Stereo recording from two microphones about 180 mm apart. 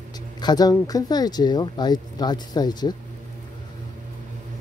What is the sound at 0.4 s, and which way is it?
Speech, 20° left (ahead or behind).